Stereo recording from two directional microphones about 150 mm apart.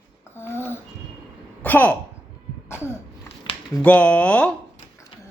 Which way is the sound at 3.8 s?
10° left (ahead or behind).